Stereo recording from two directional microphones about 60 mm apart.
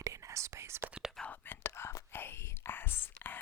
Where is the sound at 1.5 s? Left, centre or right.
Left.